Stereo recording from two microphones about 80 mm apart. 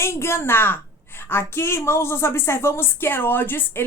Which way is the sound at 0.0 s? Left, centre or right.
Left.